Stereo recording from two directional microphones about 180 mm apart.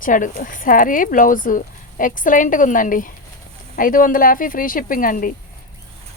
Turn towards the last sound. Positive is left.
turn(degrees=50)  # may be behind; listen again after turning